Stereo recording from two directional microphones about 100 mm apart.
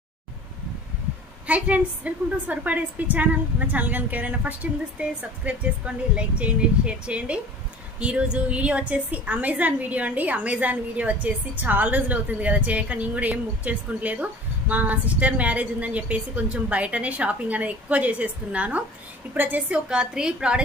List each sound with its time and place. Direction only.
1.5 s a woman's voice: 15° right (ahead or behind)